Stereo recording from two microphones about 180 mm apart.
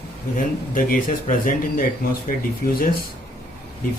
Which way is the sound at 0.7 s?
50° left (ahead or behind).